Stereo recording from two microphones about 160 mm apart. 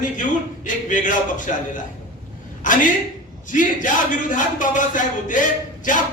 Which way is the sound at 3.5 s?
55° left (ahead or behind).